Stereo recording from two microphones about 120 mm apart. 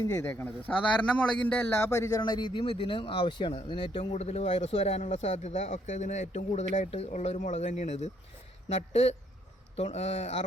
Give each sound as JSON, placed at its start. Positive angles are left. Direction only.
{"t": 0.0, "sound": "a man's voice", "side_deg": 25}
{"t": 4.2, "sound": "speech", "side_deg": 60}
{"t": 8.7, "sound": "speech", "side_deg": 60}